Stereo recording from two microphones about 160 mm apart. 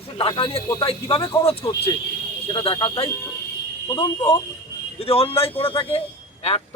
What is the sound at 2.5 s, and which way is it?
Speech, 30° left (ahead or behind).